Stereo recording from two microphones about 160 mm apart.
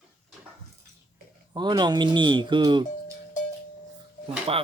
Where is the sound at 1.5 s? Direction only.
30° right (ahead or behind).